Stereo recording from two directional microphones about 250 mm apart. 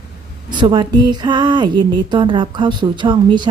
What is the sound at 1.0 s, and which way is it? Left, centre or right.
Speech, centre.